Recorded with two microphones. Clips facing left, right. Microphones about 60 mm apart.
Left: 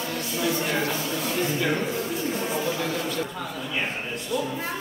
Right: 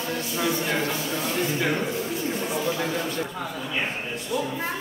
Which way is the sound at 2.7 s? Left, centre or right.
Right.